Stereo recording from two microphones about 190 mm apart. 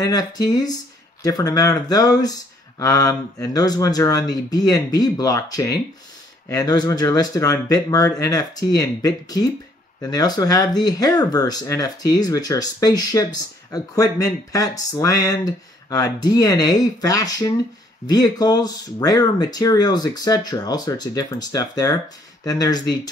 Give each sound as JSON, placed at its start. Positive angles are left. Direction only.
{"t": 0.0, "sound": "speech", "side_deg": 20}